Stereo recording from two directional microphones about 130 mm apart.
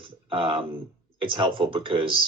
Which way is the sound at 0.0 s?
45° right (ahead or behind).